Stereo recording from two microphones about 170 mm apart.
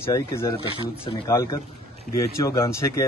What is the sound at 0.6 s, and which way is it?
Speech, 30° left (ahead or behind).